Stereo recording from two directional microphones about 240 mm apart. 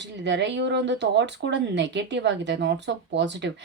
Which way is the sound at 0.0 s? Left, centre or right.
Right.